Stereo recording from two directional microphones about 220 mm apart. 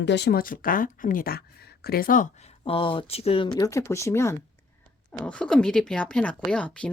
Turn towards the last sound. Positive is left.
turn(degrees=5)  # may be behind; listen again after turning